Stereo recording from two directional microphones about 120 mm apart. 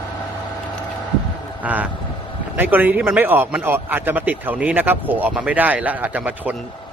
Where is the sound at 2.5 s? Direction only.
15° right (ahead or behind).